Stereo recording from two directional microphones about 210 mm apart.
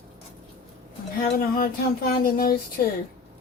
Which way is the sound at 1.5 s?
45° left (ahead or behind).